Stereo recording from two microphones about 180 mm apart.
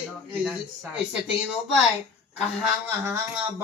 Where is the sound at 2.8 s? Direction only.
10° right (ahead or behind).